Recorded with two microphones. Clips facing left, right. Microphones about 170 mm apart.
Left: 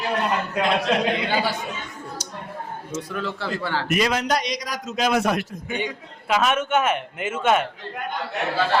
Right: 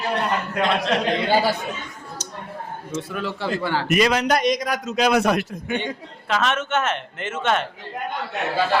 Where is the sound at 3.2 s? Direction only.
15° right (ahead or behind).